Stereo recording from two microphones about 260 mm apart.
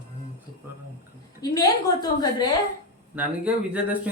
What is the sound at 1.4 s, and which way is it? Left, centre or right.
A woman's voice, centre.